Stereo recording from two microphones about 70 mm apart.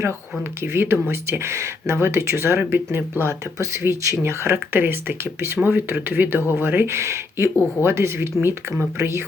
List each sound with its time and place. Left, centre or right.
0.6 s speech: right